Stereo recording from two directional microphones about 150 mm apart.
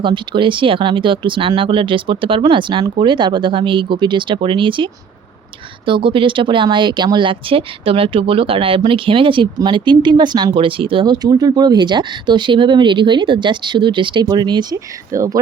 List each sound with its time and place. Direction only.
0.0 s speech: 35° right (ahead or behind)